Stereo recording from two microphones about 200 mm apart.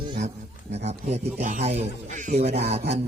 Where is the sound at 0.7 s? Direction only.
30° right (ahead or behind).